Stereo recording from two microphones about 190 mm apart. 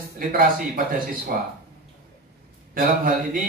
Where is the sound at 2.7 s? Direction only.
50° right (ahead or behind).